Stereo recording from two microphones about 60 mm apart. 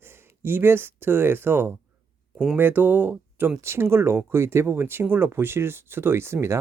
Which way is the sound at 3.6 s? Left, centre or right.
Right.